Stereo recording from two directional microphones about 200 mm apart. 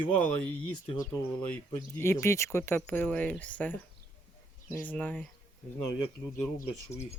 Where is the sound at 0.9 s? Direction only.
15° left (ahead or behind).